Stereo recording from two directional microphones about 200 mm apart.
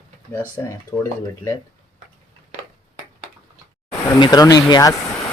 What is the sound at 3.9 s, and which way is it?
Speech, 20° left (ahead or behind).